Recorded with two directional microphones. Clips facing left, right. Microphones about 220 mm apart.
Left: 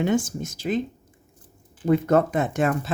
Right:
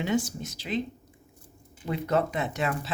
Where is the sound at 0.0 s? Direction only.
50° left (ahead or behind).